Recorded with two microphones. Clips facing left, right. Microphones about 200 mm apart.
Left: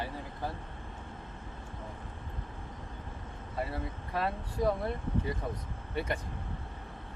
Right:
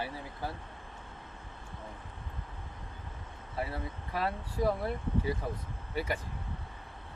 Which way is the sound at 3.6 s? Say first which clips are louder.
Left 1 dB; centre (ahead or behind).